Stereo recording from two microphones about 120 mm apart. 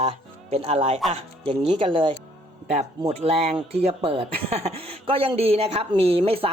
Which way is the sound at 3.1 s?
55° right (ahead or behind).